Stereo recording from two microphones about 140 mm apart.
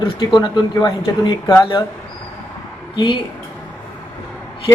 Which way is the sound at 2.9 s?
35° left (ahead or behind).